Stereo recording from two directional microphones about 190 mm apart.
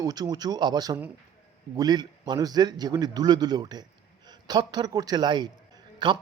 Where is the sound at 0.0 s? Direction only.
20° right (ahead or behind).